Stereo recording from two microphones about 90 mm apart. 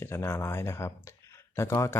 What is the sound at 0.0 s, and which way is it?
Speech, 30° left (ahead or behind).